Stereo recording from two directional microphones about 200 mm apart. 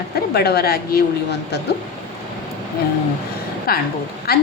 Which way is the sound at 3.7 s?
50° left (ahead or behind).